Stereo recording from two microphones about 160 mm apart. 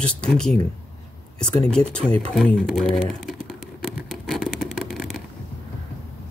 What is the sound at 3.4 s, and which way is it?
Vehicle, centre (ahead or behind).